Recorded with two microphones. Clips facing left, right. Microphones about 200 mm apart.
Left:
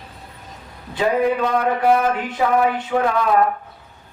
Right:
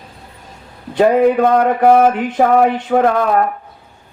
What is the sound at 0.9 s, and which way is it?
Speech, 50° right (ahead or behind).